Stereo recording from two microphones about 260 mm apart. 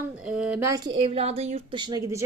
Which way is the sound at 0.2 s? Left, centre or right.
Centre.